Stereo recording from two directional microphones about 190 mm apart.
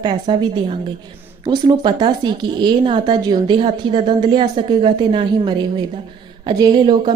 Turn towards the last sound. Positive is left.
turn(degrees=-25)  # may be behind; listen again after turning